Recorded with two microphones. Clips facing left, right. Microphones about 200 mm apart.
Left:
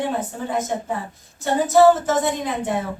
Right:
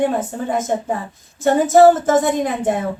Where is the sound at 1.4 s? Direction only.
50° right (ahead or behind).